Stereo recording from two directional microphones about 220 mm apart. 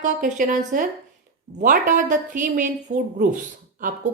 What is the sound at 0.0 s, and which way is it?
Speech, 35° right (ahead or behind).